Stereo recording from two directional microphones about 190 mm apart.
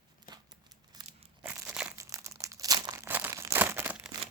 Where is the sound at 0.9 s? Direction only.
20° right (ahead or behind).